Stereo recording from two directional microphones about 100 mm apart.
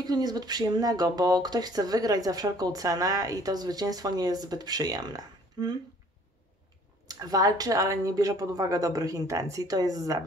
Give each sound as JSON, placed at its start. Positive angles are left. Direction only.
{"t": 0.0, "sound": "speech", "side_deg": -45}
{"t": 7.1, "sound": "speech", "side_deg": -40}